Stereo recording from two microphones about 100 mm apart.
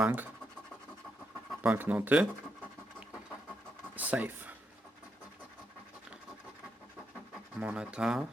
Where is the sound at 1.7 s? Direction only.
20° right (ahead or behind).